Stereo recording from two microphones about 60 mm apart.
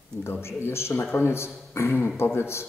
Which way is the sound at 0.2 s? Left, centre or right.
Left.